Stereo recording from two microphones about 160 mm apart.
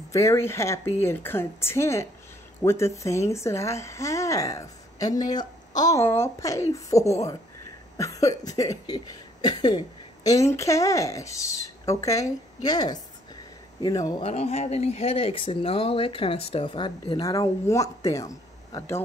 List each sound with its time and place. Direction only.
0.1 s a woman's voice: 20° left (ahead or behind)
2.6 s a sound: 15° left (ahead or behind)
14.2 s speech: 40° left (ahead or behind); by 19.0 s 15° left (ahead or behind)